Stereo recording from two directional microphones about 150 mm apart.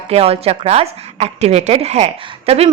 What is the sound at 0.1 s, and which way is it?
A woman's voice, 40° right (ahead or behind).